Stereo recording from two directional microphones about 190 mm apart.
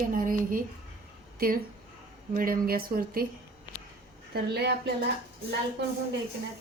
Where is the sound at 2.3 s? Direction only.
50° right (ahead or behind).